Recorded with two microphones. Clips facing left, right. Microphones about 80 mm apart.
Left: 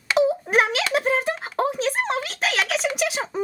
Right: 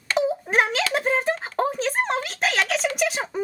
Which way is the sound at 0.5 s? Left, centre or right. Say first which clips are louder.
Right 1 dB; centre.